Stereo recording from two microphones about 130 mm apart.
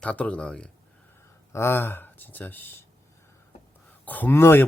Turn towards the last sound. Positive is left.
turn(degrees=15)  # may be behind; listen again after turning